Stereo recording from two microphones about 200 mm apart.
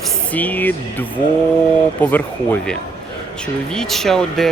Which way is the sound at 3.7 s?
Centre (ahead or behind).